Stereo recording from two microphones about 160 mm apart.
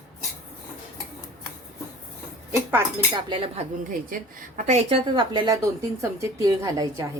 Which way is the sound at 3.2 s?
35° right (ahead or behind).